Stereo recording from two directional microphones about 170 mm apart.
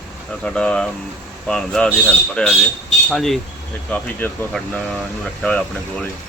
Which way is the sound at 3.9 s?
10° left (ahead or behind).